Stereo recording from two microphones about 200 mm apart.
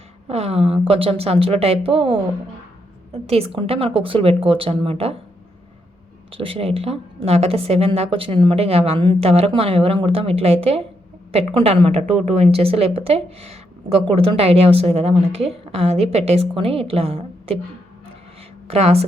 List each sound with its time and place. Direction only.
0.3 s speech: 30° right (ahead or behind)
6.3 s speech: 25° right (ahead or behind)
18.7 s speech: 30° right (ahead or behind)